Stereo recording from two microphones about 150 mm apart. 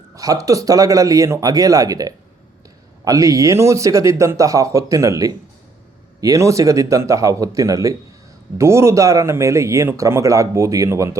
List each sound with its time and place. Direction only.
0.2 s speech: 20° right (ahead or behind)